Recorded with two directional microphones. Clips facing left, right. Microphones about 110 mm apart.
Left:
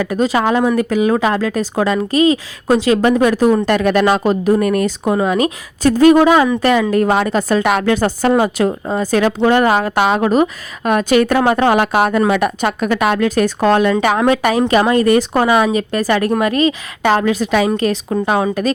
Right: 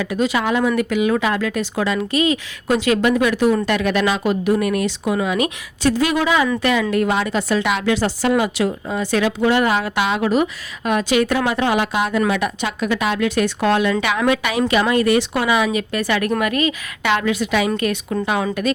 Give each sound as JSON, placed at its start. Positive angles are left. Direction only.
{"t": 0.0, "sound": "a woman's voice", "side_deg": 40}